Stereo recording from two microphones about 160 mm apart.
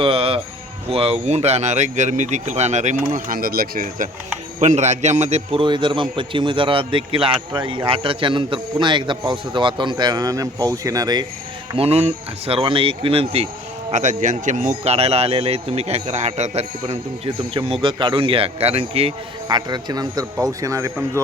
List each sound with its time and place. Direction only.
0.0 s speech: 35° right (ahead or behind); by 4.1 s 60° right (ahead or behind)
4.6 s a man's voice: 45° right (ahead or behind); by 11.3 s 25° right (ahead or behind)
11.8 s a man's voice: 40° right (ahead or behind)
13.9 s a man's voice: 50° right (ahead or behind)
19.5 s a man's voice: 25° right (ahead or behind)